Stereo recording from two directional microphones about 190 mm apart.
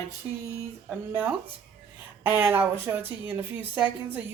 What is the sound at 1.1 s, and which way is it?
Speech, 10° right (ahead or behind).